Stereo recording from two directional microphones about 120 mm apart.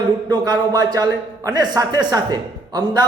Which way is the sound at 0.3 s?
35° right (ahead or behind).